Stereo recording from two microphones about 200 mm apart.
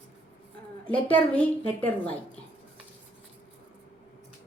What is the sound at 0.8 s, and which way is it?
A woman's voice, 5° left (ahead or behind).